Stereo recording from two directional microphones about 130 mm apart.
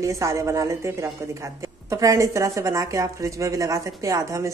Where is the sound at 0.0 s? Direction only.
25° right (ahead or behind).